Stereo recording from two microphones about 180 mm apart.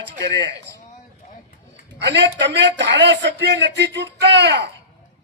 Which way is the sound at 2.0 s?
80° right.